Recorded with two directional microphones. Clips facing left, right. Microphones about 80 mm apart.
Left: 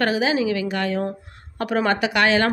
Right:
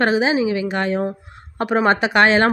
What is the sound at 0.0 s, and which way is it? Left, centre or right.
A woman's voice, right.